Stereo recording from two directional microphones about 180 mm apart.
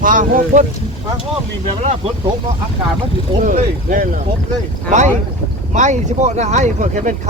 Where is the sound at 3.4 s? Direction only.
45° right (ahead or behind).